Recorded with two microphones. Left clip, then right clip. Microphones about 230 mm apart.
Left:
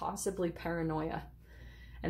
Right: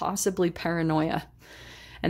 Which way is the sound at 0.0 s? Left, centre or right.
Right.